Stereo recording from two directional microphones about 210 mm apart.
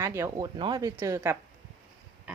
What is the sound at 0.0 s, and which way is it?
Speech, 15° right (ahead or behind).